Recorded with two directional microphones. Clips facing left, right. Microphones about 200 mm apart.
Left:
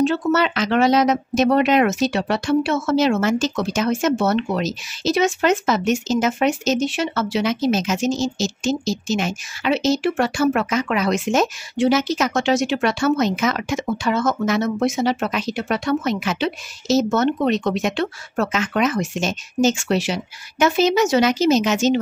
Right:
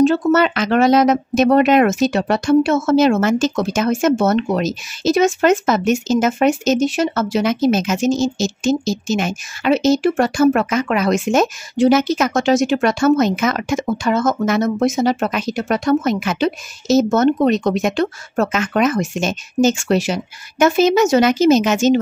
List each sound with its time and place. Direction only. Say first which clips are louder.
0.0 s speech: right 5 dB; 45° right (ahead or behind)